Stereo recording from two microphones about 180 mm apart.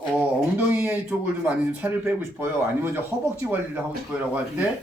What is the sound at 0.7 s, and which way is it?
Speech, 10° right (ahead or behind).